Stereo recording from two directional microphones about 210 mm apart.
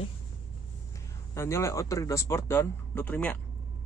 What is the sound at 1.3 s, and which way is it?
Speech, 15° left (ahead or behind).